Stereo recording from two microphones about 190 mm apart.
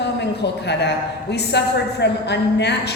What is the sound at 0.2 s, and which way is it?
A man's voice, 65° left (ahead or behind).